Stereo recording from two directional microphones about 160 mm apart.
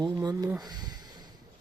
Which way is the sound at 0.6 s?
25° right (ahead or behind).